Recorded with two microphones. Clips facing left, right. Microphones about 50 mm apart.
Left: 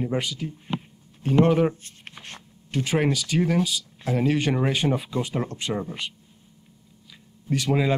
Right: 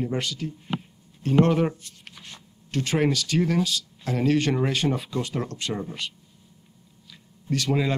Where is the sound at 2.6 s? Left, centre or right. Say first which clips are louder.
Even; centre.